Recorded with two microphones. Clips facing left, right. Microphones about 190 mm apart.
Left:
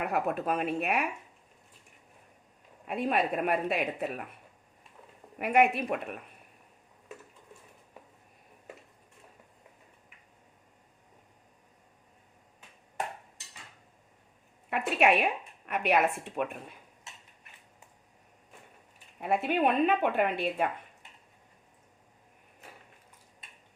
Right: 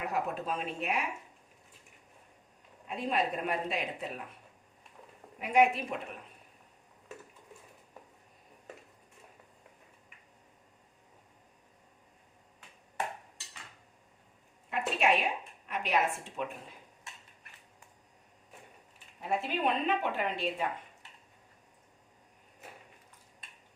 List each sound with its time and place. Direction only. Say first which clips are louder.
0.0 s a woman's voice: left 4 dB; 60° left (ahead or behind)
2.8 s a woman's voice: left 3 dB; 60° left (ahead or behind)
5.4 s a woman's voice: left 1 dB; 60° left (ahead or behind)
14.7 s a woman's voice: left 4 dB; 60° left (ahead or behind)
19.2 s a woman's voice: left 5 dB; 60° left (ahead or behind)